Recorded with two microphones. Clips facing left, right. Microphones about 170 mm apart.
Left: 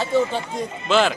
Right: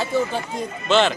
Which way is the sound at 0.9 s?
5° left (ahead or behind).